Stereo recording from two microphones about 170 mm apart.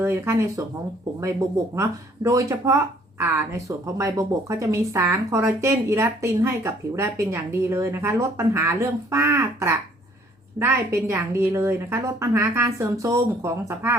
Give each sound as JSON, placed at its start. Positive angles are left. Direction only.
{"t": 0.0, "sound": "speech", "side_deg": -15}
{"t": 1.7, "sound": "speech", "side_deg": -15}